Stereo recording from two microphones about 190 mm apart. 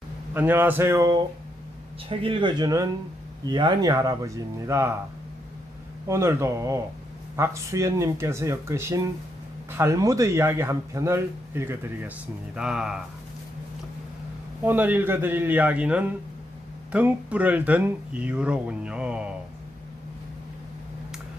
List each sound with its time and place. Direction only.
0.3 s speech: 10° right (ahead or behind)
2.0 s speech: 25° right (ahead or behind)
6.1 s speech: 15° right (ahead or behind)
14.6 s speech: 10° right (ahead or behind)